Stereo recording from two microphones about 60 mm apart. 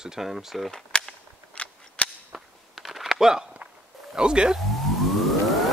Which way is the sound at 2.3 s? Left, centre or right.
Centre.